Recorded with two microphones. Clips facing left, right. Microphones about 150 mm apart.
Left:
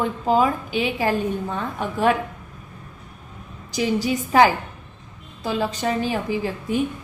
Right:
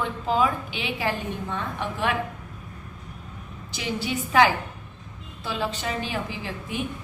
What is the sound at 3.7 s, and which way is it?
A woman's voice, 40° left (ahead or behind).